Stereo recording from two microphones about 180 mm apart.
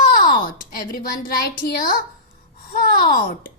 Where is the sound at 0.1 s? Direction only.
55° left (ahead or behind).